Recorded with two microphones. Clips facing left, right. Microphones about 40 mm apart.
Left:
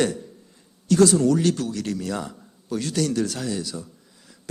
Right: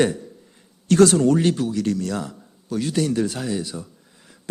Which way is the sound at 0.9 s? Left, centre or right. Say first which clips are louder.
Right 2 dB; right.